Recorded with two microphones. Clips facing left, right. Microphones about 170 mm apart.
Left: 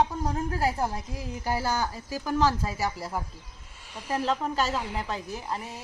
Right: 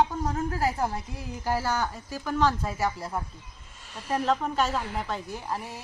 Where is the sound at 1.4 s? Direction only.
5° left (ahead or behind).